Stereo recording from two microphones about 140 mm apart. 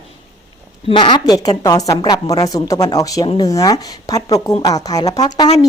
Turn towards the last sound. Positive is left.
turn(degrees=30)  # may be behind; listen again after turning